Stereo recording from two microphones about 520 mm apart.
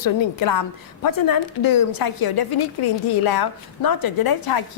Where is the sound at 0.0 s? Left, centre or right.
Left.